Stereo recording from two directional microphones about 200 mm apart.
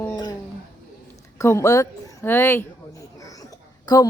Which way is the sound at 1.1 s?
15° left (ahead or behind).